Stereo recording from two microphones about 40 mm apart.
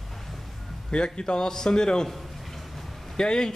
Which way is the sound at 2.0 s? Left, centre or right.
Centre.